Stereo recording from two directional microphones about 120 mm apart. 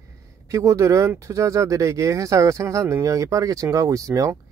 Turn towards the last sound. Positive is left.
turn(degrees=-25)  # may be behind; listen again after turning